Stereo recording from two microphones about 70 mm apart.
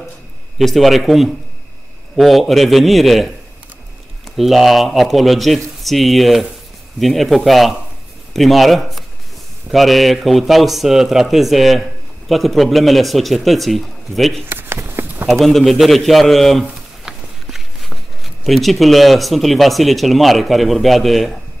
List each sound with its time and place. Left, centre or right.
0.6 s speech: centre
4.4 s speech: centre
14.5 s a sound: right
15.2 s a man's voice: centre